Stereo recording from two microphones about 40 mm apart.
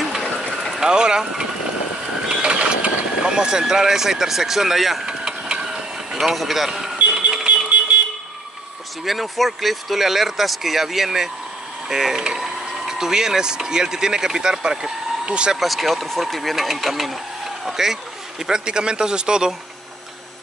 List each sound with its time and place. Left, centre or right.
0.7 s speech: centre
2.2 s speech: right; by 5.0 s centre
5.0 s a sound: centre
6.1 s speech: centre
7.1 s a sound: centre
9.0 s speech: centre
15.2 s speech: right
15.5 s speech: centre
18.5 s a man's voice: right